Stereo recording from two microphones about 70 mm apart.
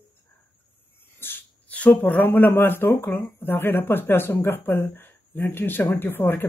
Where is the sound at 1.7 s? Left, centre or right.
Left.